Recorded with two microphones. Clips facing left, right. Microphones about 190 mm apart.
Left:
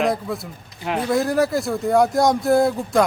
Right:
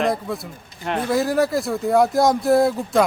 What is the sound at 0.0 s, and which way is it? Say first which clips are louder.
A man's voice: even; centre (ahead or behind).